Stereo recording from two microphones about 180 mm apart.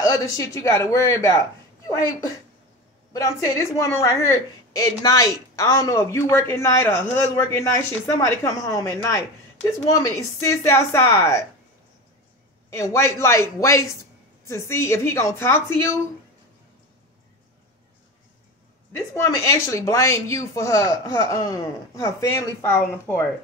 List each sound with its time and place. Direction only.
0.0 s a woman's voice: 20° left (ahead or behind)
12.6 s a woman's voice: 15° left (ahead or behind)
18.9 s a woman's voice: 15° left (ahead or behind)